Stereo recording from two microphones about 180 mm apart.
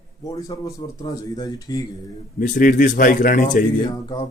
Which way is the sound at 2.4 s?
45° left (ahead or behind).